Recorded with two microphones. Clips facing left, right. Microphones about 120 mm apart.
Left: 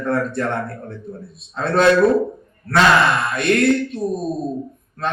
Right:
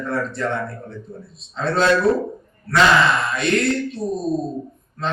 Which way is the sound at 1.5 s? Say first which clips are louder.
Left 3 dB; 55° left (ahead or behind).